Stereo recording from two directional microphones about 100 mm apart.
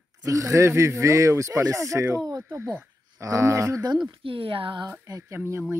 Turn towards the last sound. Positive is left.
turn(degrees=-30)  # may be behind; listen again after turning